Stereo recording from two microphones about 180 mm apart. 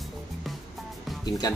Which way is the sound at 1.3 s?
25° left (ahead or behind).